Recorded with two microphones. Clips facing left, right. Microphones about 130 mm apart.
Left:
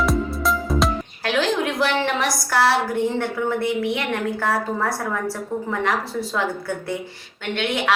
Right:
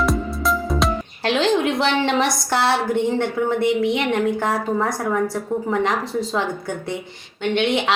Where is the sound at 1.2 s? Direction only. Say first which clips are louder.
Right 3 dB; 25° right (ahead or behind).